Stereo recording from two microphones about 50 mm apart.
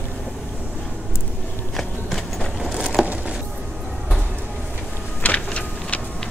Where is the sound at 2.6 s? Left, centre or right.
Centre.